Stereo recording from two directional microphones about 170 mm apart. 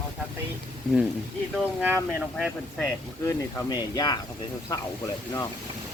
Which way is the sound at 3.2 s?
20° left (ahead or behind).